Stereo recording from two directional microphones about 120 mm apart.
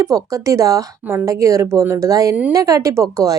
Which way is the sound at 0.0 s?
30° right (ahead or behind).